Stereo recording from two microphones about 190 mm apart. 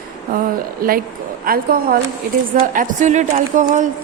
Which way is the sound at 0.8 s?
50° right (ahead or behind).